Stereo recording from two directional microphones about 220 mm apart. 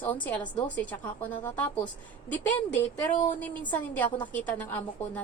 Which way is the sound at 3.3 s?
5° left (ahead or behind).